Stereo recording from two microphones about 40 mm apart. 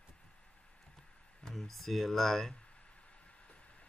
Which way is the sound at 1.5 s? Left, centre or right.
Centre.